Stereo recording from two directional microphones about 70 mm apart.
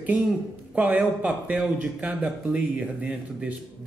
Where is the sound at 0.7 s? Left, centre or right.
Right.